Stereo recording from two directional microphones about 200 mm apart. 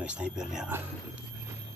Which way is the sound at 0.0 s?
5° right (ahead or behind).